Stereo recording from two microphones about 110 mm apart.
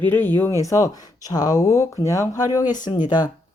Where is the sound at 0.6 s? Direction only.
30° left (ahead or behind).